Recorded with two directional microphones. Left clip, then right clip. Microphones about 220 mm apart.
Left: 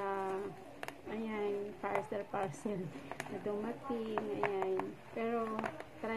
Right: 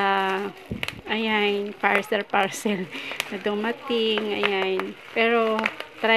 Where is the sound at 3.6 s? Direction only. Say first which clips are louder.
Right 16 dB; 40° right (ahead or behind).